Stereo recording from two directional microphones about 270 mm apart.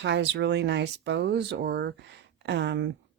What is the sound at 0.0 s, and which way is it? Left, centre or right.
Speech, right.